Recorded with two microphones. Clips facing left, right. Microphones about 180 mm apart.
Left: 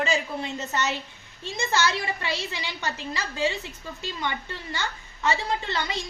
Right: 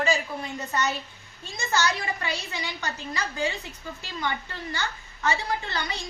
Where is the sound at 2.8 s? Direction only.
20° left (ahead or behind).